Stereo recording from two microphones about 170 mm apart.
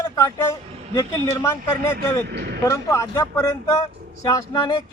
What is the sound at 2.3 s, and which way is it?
Speech, 75° right (ahead or behind).